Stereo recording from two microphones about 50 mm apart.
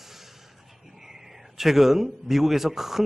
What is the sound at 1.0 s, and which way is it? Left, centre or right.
A man's voice, centre.